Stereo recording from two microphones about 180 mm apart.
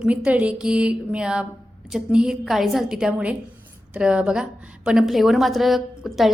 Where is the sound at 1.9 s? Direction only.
5° right (ahead or behind).